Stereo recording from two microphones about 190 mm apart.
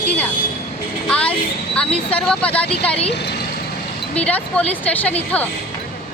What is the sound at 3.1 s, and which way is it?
Speech, 60° left (ahead or behind).